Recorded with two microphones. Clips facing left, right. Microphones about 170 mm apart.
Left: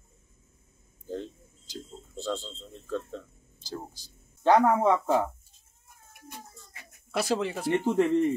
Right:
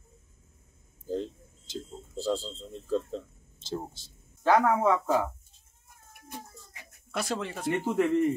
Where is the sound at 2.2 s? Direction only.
35° right (ahead or behind).